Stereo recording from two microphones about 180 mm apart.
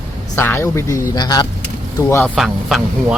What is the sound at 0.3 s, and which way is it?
Speech, 15° left (ahead or behind).